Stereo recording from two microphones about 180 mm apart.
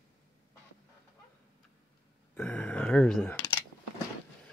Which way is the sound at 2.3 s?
5° left (ahead or behind).